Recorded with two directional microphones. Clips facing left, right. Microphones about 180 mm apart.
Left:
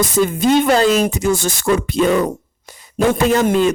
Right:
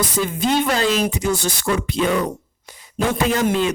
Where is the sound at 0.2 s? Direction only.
45° left (ahead or behind).